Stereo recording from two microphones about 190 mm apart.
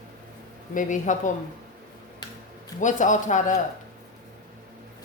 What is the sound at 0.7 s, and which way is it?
Speech, 45° left (ahead or behind).